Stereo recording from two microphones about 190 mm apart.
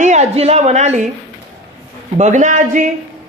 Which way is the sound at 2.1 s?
40° right (ahead or behind).